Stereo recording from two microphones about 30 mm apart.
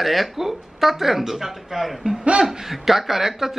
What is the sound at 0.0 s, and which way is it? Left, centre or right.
Speech, centre.